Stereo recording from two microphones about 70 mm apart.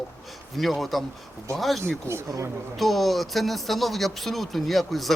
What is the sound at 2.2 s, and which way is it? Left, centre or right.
Speech, right.